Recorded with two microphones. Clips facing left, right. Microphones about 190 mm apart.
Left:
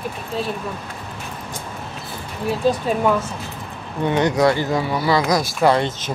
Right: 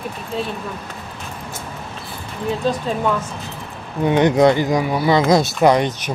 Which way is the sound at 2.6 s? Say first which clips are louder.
Left 3 dB; 10° left (ahead or behind).